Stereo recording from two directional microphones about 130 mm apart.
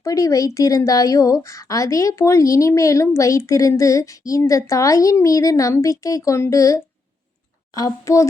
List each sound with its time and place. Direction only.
0.0 s a woman's voice: 25° left (ahead or behind)